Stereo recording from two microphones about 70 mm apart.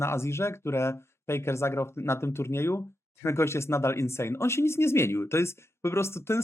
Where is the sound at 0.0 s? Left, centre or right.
Left.